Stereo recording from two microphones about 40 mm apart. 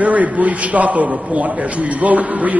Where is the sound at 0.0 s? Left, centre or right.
Right.